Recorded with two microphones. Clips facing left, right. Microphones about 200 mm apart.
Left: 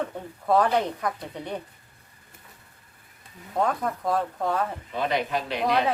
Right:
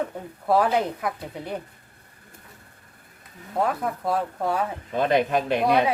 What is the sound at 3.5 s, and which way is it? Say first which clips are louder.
A woman's voice: right 1 dB; 5° right (ahead or behind).